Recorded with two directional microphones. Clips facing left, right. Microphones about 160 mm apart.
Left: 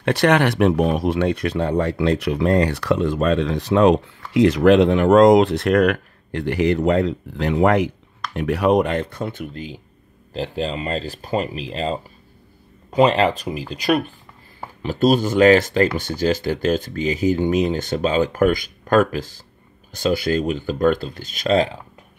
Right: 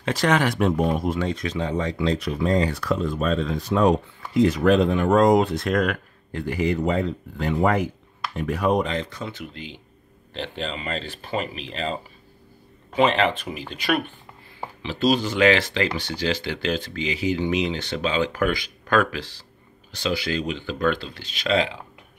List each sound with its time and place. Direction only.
0.0 s speech: 65° left (ahead or behind); by 21.7 s 40° left (ahead or behind)